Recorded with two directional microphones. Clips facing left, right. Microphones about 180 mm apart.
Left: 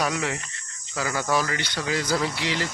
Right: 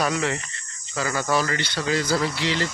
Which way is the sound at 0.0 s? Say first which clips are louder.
Right 2 dB; 10° left (ahead or behind).